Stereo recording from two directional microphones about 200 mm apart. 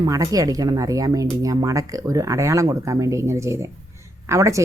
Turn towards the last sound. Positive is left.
turn(degrees=-15)  # may be behind; listen again after turning